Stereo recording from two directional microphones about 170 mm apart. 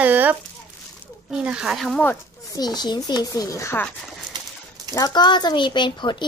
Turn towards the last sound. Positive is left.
turn(degrees=25)  # may be behind; listen again after turning